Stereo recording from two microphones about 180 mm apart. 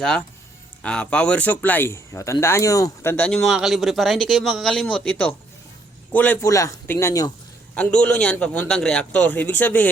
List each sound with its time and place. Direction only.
0.0 s a man's voice: 5° left (ahead or behind)